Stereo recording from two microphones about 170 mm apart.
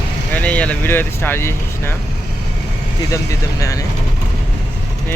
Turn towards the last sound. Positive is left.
turn(degrees=20)  # may be behind; listen again after turning